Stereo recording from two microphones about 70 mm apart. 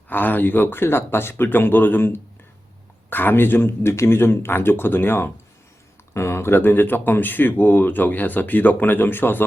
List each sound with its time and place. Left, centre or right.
0.1 s speech: left